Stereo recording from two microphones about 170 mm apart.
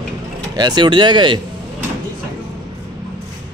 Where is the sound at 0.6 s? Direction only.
25° right (ahead or behind).